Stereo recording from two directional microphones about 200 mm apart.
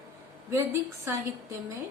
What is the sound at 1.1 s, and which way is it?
Speech, 15° right (ahead or behind).